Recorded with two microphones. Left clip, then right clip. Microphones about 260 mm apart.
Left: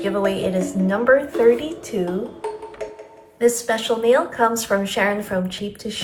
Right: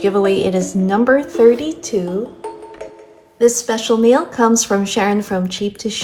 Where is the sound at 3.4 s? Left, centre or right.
Right.